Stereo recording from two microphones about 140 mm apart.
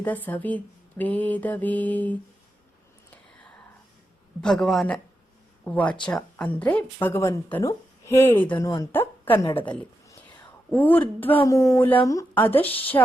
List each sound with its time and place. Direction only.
0.0 s a woman's voice: 10° left (ahead or behind)
4.4 s a woman's voice: 5° left (ahead or behind)
8.6 s speech: 25° left (ahead or behind)
8.9 s a woman's voice: 15° left (ahead or behind)